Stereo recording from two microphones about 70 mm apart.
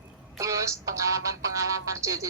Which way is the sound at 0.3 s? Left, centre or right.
Right.